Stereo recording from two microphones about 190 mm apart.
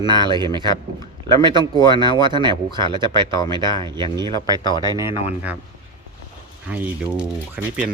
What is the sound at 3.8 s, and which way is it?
Speech, 25° right (ahead or behind).